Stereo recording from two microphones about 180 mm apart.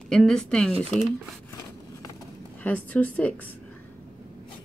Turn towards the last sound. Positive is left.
turn(degrees=10)  # may be behind; listen again after turning